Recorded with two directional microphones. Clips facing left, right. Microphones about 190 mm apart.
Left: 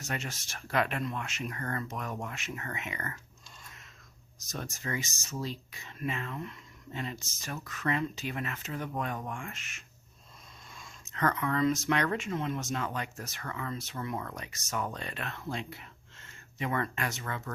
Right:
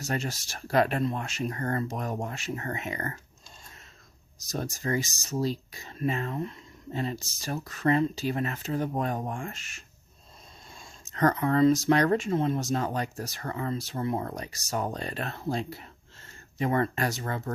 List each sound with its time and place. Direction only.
0.0 s speech: 35° right (ahead or behind)
4.4 s speech: 35° right (ahead or behind)